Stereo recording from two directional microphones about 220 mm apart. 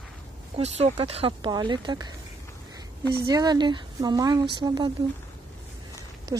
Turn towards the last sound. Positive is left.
turn(degrees=-15)  # may be behind; listen again after turning